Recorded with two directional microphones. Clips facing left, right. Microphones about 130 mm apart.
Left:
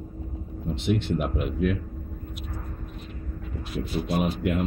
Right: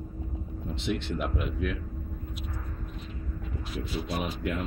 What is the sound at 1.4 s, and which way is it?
Speech, 45° left (ahead or behind).